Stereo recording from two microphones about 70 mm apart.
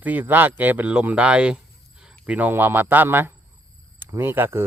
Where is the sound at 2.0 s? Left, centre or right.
Centre.